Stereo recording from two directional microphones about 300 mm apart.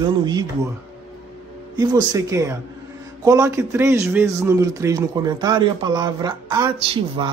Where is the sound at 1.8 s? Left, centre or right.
Centre.